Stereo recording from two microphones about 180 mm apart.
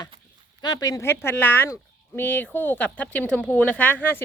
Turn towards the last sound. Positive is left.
turn(degrees=10)  # may be behind; listen again after turning